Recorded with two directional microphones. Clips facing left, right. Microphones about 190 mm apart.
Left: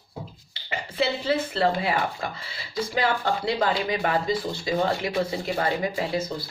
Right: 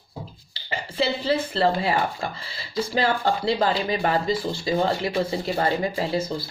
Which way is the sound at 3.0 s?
30° right (ahead or behind).